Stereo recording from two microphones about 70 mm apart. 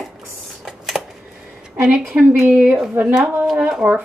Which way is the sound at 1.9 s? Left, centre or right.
Right.